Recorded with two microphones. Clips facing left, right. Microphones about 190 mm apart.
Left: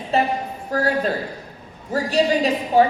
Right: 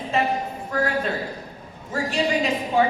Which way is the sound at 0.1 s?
35° left (ahead or behind).